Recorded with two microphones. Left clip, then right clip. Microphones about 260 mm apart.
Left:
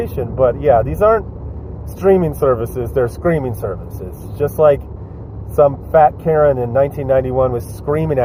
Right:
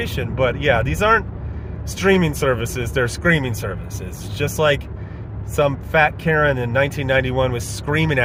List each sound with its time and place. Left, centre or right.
0.2 s speech: right